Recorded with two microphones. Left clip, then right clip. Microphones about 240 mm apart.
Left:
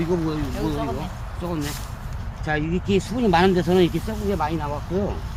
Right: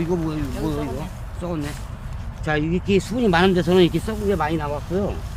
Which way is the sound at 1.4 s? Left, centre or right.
Centre.